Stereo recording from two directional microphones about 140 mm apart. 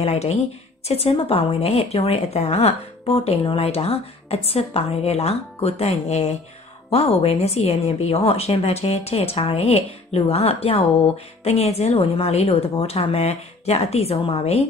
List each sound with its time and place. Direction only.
0.0 s a woman's voice: 50° left (ahead or behind)